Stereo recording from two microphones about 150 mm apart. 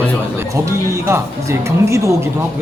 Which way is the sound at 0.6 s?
20° right (ahead or behind).